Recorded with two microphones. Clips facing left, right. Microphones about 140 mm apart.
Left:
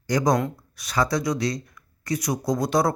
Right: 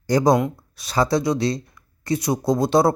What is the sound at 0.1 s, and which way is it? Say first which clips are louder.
Speech: right 4 dB; 30° right (ahead or behind).